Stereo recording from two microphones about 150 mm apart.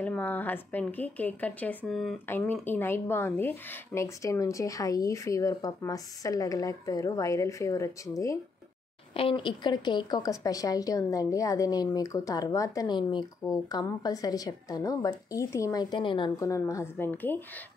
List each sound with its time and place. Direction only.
0.0 s speech: 10° left (ahead or behind)
2.2 s a woman's voice: 15° left (ahead or behind)
9.1 s a woman's voice: 35° left (ahead or behind)
16.3 s a woman's voice: 20° left (ahead or behind)